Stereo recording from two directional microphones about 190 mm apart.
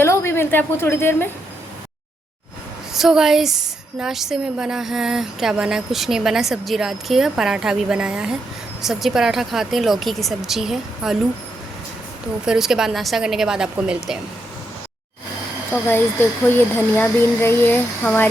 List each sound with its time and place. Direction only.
0.0 s a woman's voice: 15° left (ahead or behind)
2.9 s speech: centre (ahead or behind)
12.5 s speech: centre (ahead or behind)
15.7 s speech: 10° left (ahead or behind)